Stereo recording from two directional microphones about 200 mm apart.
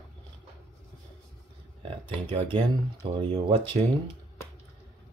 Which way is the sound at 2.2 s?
25° right (ahead or behind).